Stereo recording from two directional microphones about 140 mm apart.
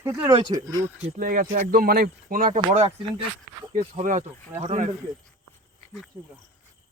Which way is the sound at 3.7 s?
70° right (ahead or behind).